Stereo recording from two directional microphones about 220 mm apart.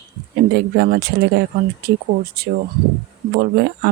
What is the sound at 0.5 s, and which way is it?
Speech, 45° right (ahead or behind).